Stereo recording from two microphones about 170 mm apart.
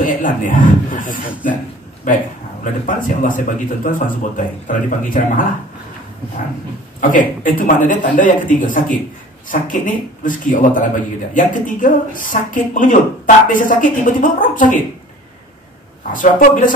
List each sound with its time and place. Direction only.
0.0 s a man's voice: 50° left (ahead or behind)
7.0 s a man's voice: 50° left (ahead or behind)
16.1 s a man's voice: 55° left (ahead or behind)